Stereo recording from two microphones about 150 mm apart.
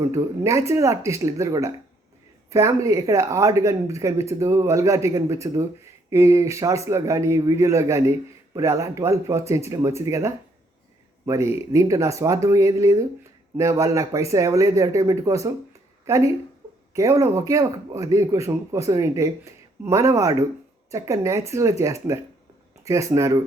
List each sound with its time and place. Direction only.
0.0 s speech: 20° right (ahead or behind)